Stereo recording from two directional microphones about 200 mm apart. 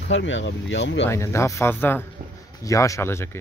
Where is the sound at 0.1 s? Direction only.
65° left (ahead or behind).